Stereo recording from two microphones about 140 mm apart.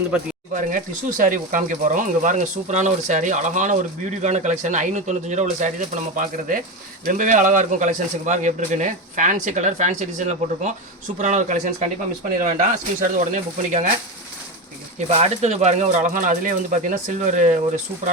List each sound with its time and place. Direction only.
0.5 s speech: 70° right (ahead or behind)
14.9 s speech: 55° right (ahead or behind)